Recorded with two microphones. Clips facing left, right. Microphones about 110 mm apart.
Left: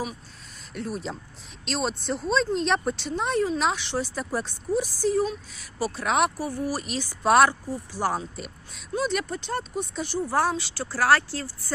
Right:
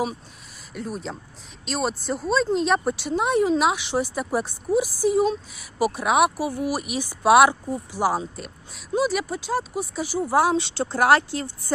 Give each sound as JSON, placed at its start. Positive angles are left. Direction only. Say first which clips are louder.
{"t": 0.7, "sound": "speech", "louder": "even", "side_deg": 0}
{"t": 10.5, "sound": "speech", "louder": "right 7 dB", "side_deg": -25}